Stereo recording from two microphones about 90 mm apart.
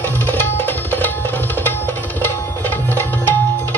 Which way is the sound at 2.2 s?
20° left (ahead or behind).